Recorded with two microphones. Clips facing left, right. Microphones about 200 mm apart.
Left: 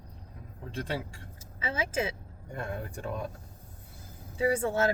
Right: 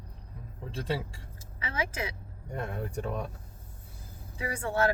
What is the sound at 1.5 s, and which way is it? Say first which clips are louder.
Speech: left 3 dB; 25° left (ahead or behind).